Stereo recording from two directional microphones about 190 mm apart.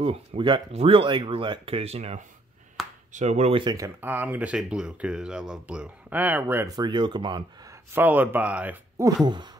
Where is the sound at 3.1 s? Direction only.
35° right (ahead or behind).